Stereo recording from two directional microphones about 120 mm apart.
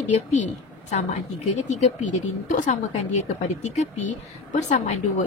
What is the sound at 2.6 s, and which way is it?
A woman's voice, 80° left.